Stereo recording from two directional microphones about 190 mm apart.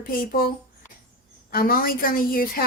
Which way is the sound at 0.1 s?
50° left (ahead or behind).